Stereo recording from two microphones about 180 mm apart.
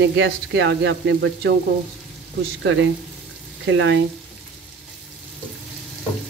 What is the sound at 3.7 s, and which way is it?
Speech, 90° right.